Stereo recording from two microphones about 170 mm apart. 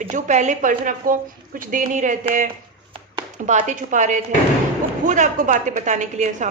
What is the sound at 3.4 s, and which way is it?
A woman's voice, 45° right (ahead or behind).